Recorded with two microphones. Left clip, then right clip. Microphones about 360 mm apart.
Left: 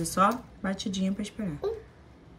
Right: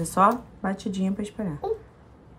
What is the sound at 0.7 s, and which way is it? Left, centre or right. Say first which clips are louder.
Speech: right 2 dB; right.